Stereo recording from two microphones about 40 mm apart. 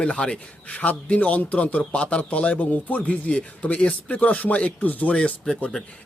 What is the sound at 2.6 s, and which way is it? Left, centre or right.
Speech, left.